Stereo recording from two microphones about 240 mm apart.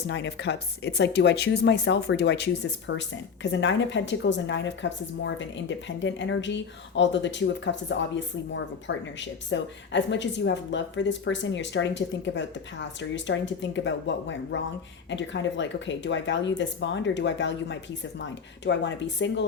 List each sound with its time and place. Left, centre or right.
0.1 s a woman's voice: left